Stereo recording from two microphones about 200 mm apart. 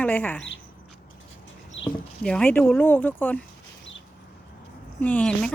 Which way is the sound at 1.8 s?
65° left (ahead or behind).